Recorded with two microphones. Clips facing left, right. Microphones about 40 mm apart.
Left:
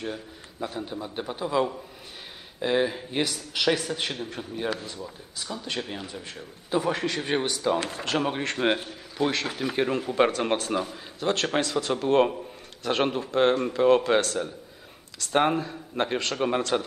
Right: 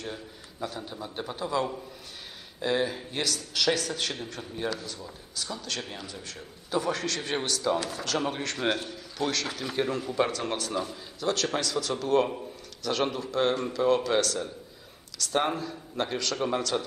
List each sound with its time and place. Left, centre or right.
0.0 s a sound: centre
0.7 s a man's voice: centre
4.6 s a man's voice: left
7.8 s a man's voice: left